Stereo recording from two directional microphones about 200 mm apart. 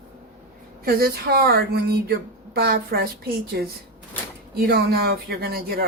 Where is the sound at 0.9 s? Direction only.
50° right (ahead or behind).